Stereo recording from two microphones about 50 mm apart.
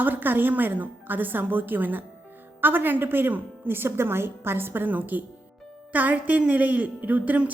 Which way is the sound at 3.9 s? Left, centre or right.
Right.